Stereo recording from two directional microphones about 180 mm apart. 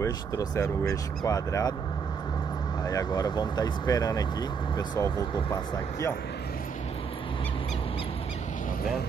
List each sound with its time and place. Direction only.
0.0 s speech: 15° left (ahead or behind)
2.8 s speech: 20° left (ahead or behind)